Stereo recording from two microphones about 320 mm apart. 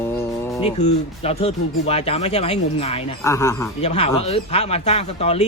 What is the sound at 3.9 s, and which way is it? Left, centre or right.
Speech, centre.